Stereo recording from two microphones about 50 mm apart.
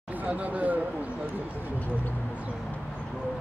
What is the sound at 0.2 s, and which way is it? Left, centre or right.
Speech, right.